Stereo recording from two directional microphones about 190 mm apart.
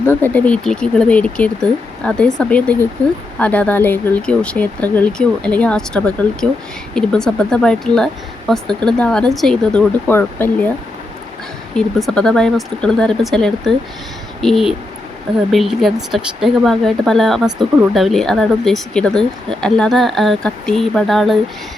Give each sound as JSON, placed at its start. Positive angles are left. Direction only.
{"t": 0.0, "sound": "speech", "side_deg": 10}
{"t": 8.6, "sound": "speech", "side_deg": -25}
{"t": 9.0, "sound": "speech", "side_deg": 5}
{"t": 11.8, "sound": "speech", "side_deg": 0}